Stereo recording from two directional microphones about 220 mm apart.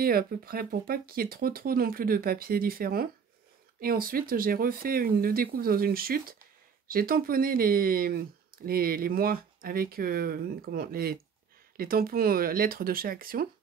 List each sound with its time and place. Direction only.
0.0 s speech: 40° right (ahead or behind)